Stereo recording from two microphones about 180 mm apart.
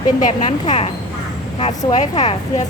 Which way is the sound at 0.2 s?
40° left (ahead or behind).